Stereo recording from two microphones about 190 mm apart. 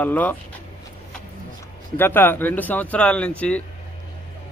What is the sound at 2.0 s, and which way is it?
Speech, 10° left (ahead or behind).